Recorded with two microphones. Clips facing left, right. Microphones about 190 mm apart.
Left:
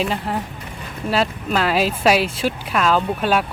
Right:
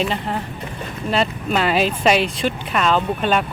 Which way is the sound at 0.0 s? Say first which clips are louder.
Even; 5° left (ahead or behind).